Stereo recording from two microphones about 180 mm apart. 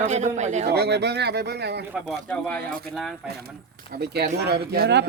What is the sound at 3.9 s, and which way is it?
Speech, 65° right (ahead or behind).